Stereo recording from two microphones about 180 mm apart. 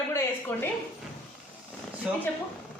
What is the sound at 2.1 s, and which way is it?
Speech, 5° right (ahead or behind).